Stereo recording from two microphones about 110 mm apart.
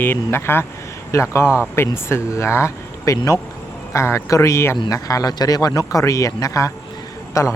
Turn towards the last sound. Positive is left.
turn(degrees=25)  # may be behind; listen again after turning